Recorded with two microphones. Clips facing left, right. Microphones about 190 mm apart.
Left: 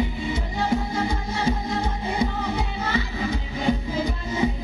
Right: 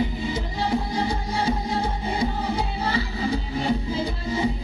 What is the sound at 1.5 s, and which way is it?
Music, 35° right (ahead or behind).